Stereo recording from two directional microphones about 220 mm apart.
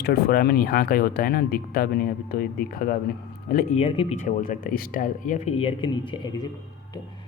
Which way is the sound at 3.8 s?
25° left (ahead or behind).